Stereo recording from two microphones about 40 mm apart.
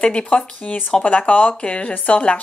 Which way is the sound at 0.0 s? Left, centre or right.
Left.